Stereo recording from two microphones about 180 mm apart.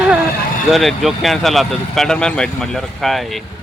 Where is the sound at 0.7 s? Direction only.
Centre (ahead or behind).